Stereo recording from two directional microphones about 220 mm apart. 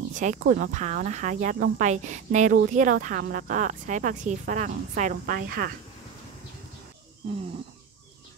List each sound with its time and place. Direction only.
0.1 s speech: 35° right (ahead or behind)